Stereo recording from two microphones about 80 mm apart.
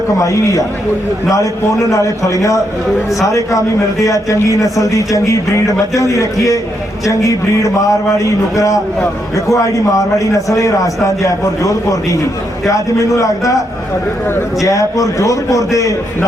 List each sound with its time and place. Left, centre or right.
0.2 s a man's voice: left
14.6 s a man's voice: left